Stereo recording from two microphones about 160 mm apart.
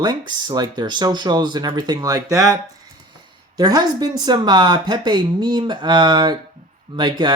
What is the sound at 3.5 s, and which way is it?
Speech, 25° right (ahead or behind).